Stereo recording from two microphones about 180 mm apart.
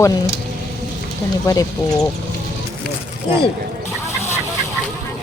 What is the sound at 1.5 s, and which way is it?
Speech, 20° left (ahead or behind).